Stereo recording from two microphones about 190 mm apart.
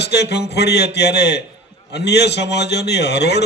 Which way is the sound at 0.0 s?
60° left (ahead or behind).